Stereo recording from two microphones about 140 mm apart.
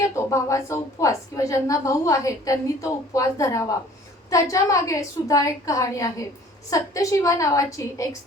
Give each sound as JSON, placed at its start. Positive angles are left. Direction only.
{"t": 0.0, "sound": "a woman's voice", "side_deg": 20}